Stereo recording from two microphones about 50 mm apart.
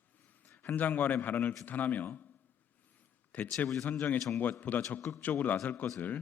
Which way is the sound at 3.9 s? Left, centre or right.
Left.